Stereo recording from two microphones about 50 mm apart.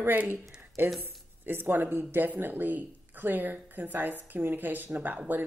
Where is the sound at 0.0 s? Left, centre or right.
Right.